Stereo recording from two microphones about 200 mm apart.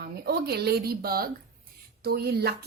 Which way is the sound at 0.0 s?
50° right (ahead or behind).